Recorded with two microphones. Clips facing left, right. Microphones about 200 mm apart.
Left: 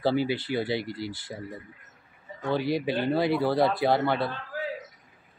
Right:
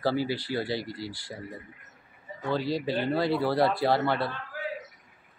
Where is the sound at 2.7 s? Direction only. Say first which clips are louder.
Left 2 dB; 15° left (ahead or behind).